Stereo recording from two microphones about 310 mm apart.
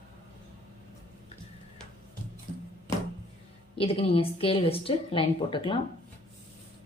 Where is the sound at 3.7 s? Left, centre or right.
Centre.